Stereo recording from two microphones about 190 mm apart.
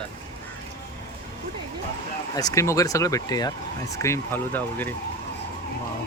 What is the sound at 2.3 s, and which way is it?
Speech, 20° left (ahead or behind).